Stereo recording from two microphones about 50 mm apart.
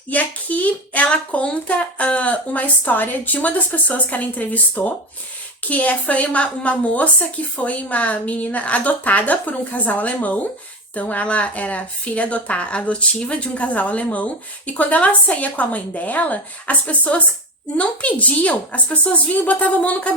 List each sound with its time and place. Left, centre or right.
0.1 s speech: left